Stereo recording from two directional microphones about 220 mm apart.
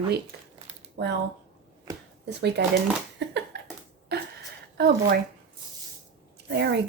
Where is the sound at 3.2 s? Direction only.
50° right (ahead or behind).